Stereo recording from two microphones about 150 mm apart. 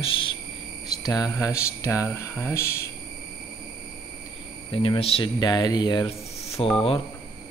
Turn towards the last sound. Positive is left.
turn(degrees=40)  # may be behind; listen again after turning